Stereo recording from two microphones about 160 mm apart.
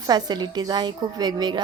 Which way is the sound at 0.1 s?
25° right (ahead or behind).